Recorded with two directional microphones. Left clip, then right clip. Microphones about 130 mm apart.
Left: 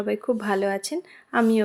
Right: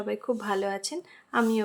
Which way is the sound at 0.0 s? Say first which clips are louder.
Left 5 dB; 30° left (ahead or behind).